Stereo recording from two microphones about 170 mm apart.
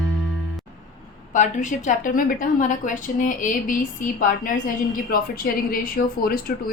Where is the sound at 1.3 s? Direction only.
50° left (ahead or behind).